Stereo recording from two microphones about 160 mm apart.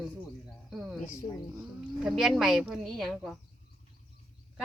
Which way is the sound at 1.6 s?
5° right (ahead or behind).